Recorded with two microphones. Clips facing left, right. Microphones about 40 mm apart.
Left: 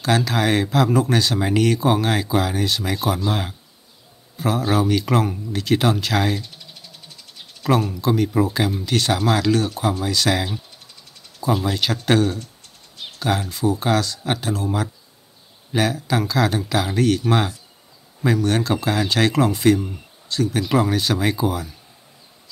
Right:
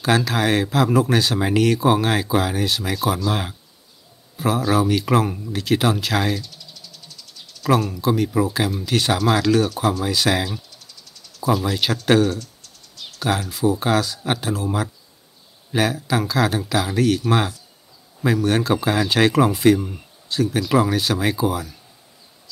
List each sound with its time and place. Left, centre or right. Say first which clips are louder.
0.0 s speech: right 1 dB; centre
6.4 s a sound: even; left
7.9 s speech: even; centre
10.7 s a sound: even; left
11.6 s speech: right 1 dB; centre
12.4 s typing: even; left
13.5 s speech: right 2 dB; centre